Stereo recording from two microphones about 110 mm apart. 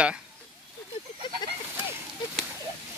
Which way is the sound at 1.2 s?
45° left (ahead or behind).